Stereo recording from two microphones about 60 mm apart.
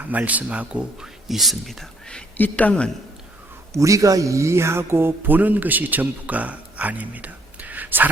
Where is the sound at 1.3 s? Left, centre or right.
Centre.